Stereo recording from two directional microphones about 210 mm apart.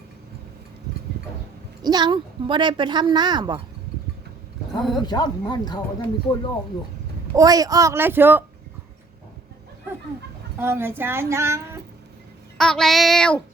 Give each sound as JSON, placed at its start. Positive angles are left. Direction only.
{"t": 1.8, "sound": "a woman's voice", "side_deg": -20}
{"t": 4.8, "sound": "speech", "side_deg": 0}
{"t": 5.0, "sound": "speech", "side_deg": 20}
{"t": 7.3, "sound": "speech", "side_deg": -15}
{"t": 10.6, "sound": "speech", "side_deg": -10}
{"t": 12.5, "sound": "speech", "side_deg": 0}